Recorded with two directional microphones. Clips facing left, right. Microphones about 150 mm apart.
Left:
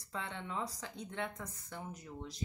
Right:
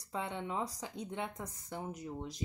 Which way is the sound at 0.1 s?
15° right (ahead or behind).